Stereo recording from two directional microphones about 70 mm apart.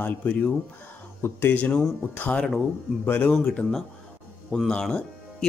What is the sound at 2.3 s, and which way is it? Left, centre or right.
Speech, centre.